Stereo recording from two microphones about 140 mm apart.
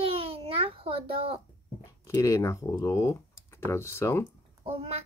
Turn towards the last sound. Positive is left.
turn(degrees=-45)  # may be behind; listen again after turning